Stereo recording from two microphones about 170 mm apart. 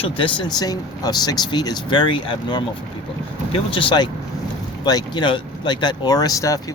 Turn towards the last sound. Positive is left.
turn(degrees=20)  # may be behind; listen again after turning